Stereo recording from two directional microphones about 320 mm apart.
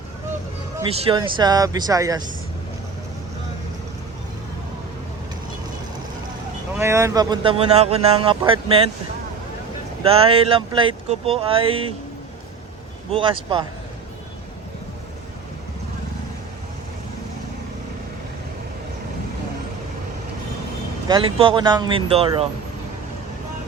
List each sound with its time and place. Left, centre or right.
0.8 s speech: centre
6.7 s speech: centre
10.0 s speech: centre
13.1 s speech: centre
21.1 s speech: centre